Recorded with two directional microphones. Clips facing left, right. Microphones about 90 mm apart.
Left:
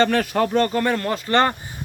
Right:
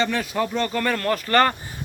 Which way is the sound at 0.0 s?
50° left (ahead or behind).